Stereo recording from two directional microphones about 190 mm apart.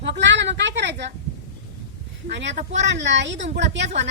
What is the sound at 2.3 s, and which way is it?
A woman's voice, 70° right (ahead or behind).